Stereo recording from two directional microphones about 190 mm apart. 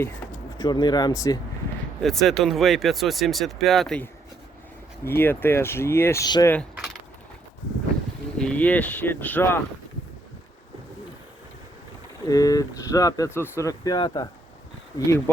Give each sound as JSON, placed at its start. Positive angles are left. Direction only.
{"t": 0.6, "sound": "speech", "side_deg": 20}
{"t": 2.0, "sound": "speech", "side_deg": 0}
{"t": 8.4, "sound": "speech", "side_deg": 5}
{"t": 12.3, "sound": "speech", "side_deg": 20}